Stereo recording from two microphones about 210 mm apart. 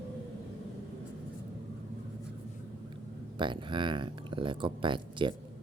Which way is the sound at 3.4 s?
20° right (ahead or behind).